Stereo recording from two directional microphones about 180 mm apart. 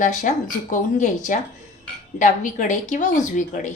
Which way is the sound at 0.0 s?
45° left (ahead or behind).